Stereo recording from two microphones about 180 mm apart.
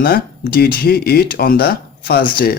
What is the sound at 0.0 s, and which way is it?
A man's voice, 60° left (ahead or behind).